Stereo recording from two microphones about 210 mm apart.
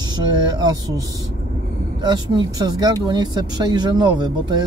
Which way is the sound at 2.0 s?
20° right (ahead or behind).